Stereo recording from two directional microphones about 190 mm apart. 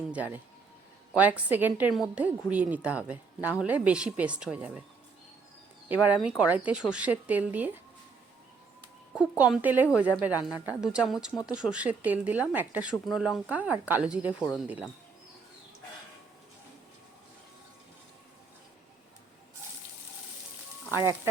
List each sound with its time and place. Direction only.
0.1 s speech: 10° right (ahead or behind)
5.9 s speech: 10° right (ahead or behind)
9.1 s a woman's voice: 5° right (ahead or behind)
20.9 s speech: 15° right (ahead or behind)